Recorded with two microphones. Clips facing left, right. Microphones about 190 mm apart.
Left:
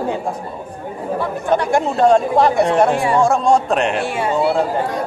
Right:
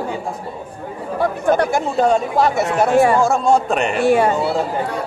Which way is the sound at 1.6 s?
5° right (ahead or behind).